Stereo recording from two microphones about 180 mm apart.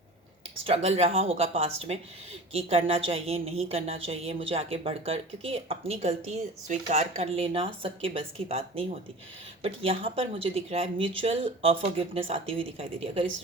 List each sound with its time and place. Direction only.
0.6 s speech: 35° right (ahead or behind)